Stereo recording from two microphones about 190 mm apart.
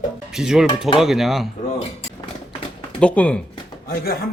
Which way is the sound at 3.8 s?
50° left (ahead or behind).